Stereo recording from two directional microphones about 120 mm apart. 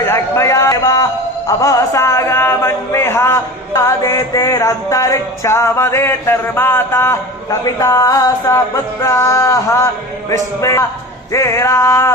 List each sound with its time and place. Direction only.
0.0 s speech: 20° left (ahead or behind)